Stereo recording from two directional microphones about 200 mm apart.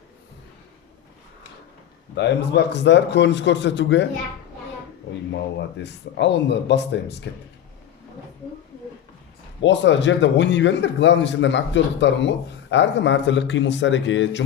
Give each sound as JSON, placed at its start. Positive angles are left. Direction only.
{"t": 2.1, "sound": "a man's voice", "side_deg": 60}
{"t": 5.3, "sound": "a man's voice", "side_deg": 60}
{"t": 9.6, "sound": "a man's voice", "side_deg": 65}